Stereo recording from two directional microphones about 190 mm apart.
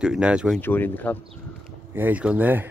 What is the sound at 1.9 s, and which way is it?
Speech, 10° right (ahead or behind).